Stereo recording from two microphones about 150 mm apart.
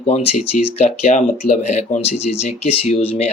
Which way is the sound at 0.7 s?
45° left (ahead or behind).